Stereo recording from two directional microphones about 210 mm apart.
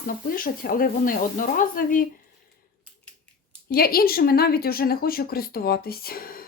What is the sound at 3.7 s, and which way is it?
A woman's voice, 45° left (ahead or behind).